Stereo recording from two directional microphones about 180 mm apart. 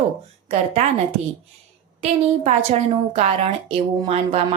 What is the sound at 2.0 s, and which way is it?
A woman's voice, 40° right (ahead or behind).